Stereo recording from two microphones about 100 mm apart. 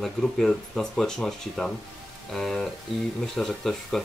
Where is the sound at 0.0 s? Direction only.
5° left (ahead or behind).